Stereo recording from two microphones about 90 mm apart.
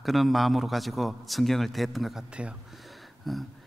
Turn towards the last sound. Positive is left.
turn(degrees=0)  # may be behind; listen again after turning